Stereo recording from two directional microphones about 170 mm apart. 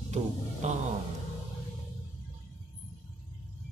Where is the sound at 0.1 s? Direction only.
45° right (ahead or behind).